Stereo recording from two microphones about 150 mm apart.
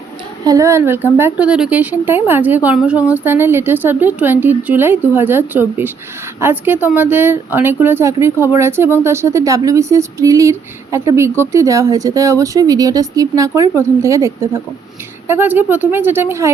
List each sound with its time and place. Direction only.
0.4 s a woman's voice: 20° right (ahead or behind)